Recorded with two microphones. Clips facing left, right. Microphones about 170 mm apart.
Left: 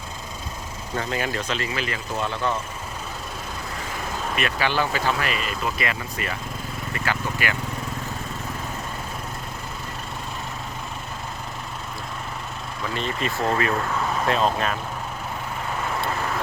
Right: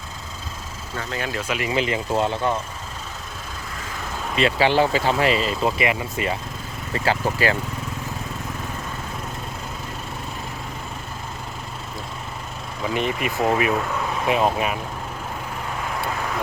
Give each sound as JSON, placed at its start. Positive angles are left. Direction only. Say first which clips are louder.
{"t": 1.3, "sound": "speech", "louder": "right 3 dB", "side_deg": -10}
{"t": 4.4, "sound": "speech", "louder": "right 7 dB", "side_deg": -25}
{"t": 12.8, "sound": "speech", "louder": "right 4 dB", "side_deg": -15}